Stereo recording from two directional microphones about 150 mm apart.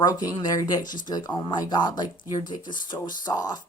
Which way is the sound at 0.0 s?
25° left (ahead or behind).